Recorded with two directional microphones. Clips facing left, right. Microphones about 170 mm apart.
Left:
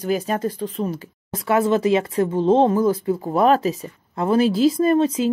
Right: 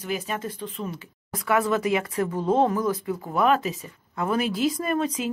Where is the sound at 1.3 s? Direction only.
25° left (ahead or behind).